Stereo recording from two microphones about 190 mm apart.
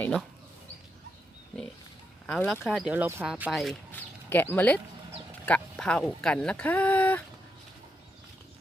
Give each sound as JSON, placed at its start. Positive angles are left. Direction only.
{"t": 0.0, "sound": "speech", "side_deg": 5}
{"t": 2.2, "sound": "speech", "side_deg": 5}